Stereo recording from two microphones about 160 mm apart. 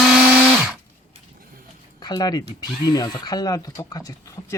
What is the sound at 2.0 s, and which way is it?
Speech, 25° left (ahead or behind).